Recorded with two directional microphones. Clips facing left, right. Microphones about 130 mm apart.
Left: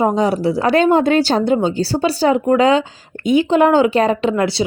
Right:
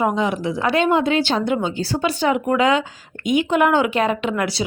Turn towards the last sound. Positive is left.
turn(degrees=30)  # may be behind; listen again after turning